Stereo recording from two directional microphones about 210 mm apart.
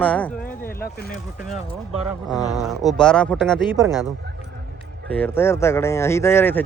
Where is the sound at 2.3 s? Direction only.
15° left (ahead or behind).